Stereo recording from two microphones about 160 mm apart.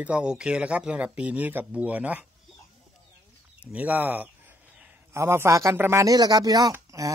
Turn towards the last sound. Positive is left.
turn(degrees=-20)  # may be behind; listen again after turning